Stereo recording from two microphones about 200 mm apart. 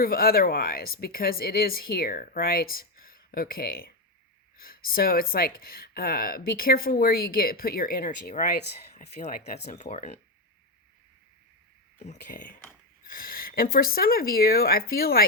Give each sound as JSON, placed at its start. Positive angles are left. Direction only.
{"t": 0.0, "sound": "speech", "side_deg": 50}
{"t": 12.0, "sound": "speech", "side_deg": 40}